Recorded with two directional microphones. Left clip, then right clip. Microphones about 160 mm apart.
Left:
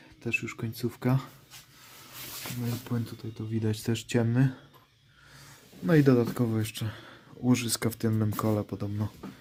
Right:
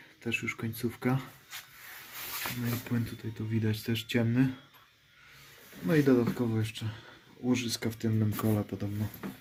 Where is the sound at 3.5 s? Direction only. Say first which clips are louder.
Left 2 dB; 30° left (ahead or behind).